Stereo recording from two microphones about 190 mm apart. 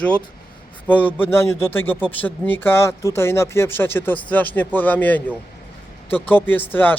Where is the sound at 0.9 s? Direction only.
10° left (ahead or behind).